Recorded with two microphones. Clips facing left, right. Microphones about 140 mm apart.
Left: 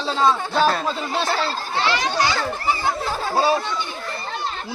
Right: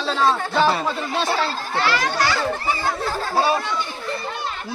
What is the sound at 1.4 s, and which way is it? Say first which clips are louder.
A child's voice: right 1 dB; 30° left (ahead or behind).